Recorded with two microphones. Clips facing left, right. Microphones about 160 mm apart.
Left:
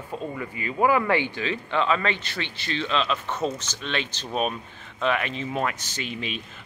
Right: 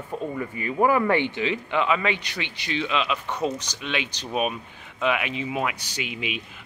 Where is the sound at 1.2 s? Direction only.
15° right (ahead or behind).